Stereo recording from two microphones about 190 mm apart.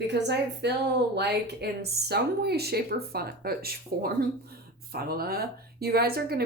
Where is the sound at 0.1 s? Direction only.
65° right (ahead or behind).